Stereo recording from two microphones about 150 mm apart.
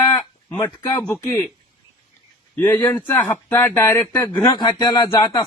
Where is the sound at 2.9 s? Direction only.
10° left (ahead or behind).